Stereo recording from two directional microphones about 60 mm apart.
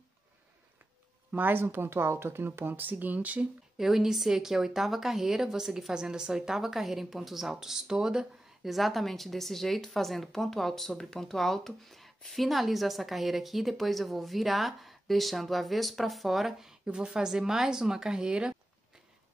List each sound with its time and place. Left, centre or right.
1.3 s speech: right
3.7 s a woman's voice: centre